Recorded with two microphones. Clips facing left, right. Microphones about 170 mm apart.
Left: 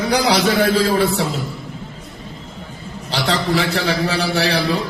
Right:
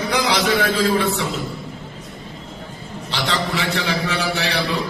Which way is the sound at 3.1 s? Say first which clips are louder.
Left 4 dB; 40° left (ahead or behind).